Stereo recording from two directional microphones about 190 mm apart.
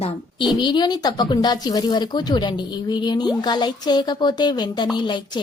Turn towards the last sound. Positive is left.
turn(degrees=25)  # may be behind; listen again after turning